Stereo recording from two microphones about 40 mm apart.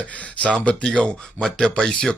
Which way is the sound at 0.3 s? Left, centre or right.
Left.